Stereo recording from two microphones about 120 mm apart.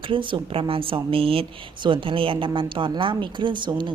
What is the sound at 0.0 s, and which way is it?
Speech, 45° right (ahead or behind).